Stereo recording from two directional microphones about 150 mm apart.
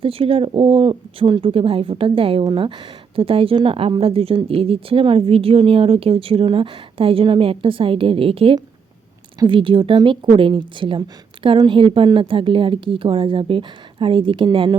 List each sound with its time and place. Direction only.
0.0 s speech: 40° right (ahead or behind)